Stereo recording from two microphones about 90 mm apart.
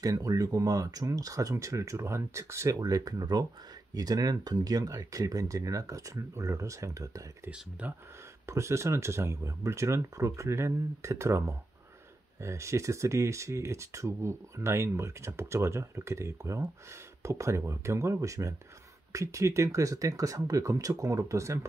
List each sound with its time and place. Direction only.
0.0 s speech: 40° right (ahead or behind)
2.8 s speech: 45° right (ahead or behind)
7.8 s speech: 20° right (ahead or behind)
8.5 s speech: 30° right (ahead or behind)